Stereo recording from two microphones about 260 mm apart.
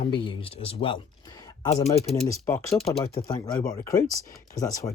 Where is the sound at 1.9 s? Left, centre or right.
Left.